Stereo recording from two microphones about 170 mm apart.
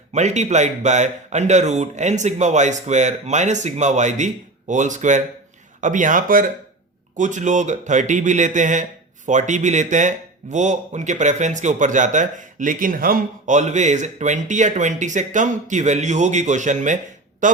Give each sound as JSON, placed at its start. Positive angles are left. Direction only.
{"t": 0.1, "sound": "speech", "side_deg": -40}